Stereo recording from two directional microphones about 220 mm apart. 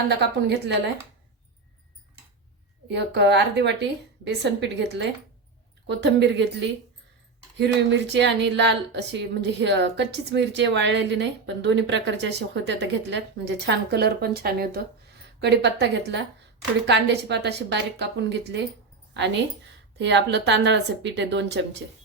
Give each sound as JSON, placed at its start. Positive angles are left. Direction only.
{"t": 0.2, "sound": "speech", "side_deg": -50}
{"t": 2.9, "sound": "speech", "side_deg": -50}
{"t": 7.5, "sound": "speech", "side_deg": -50}